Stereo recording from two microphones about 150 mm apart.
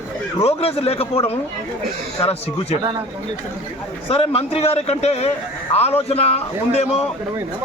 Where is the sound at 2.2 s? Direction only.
40° left (ahead or behind).